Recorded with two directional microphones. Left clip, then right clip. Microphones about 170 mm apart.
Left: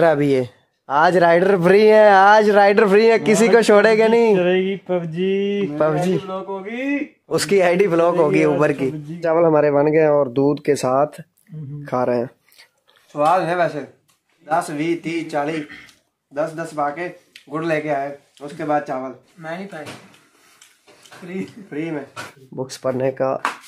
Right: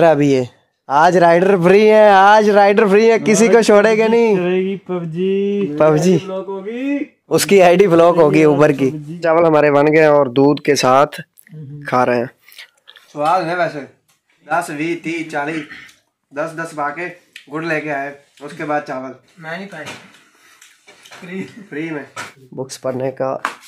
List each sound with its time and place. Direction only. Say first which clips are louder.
0.0 s a man's voice: right 4 dB; 20° right (ahead or behind); by 5.7 s centre (ahead or behind)
5.8 s a man's voice: right 7 dB; 35° right (ahead or behind)
6.2 s speech: right 3 dB; 5° left (ahead or behind)
7.2 s a man's voice: right 6 dB; 40° right (ahead or behind)
9.2 s speech: right 3 dB; centre (ahead or behind)
13.1 s speech: right 1 dB; 20° left (ahead or behind)
21.6 s speech: right 2 dB; 20° left (ahead or behind)
22.6 s speech: even; centre (ahead or behind)